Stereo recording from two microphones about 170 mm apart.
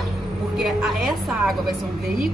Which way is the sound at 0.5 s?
Centre (ahead or behind).